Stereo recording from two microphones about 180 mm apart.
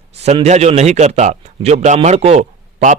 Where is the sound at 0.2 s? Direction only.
35° right (ahead or behind).